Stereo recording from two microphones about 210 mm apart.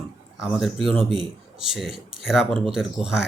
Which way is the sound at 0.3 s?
Centre (ahead or behind).